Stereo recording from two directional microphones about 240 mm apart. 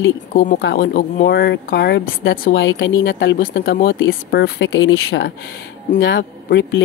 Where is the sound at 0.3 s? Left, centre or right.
Left.